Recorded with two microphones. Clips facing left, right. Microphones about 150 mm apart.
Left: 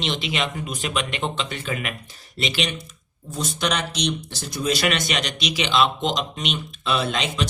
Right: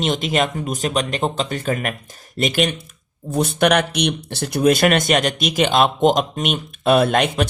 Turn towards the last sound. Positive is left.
turn(degrees=-55)  # may be behind; listen again after turning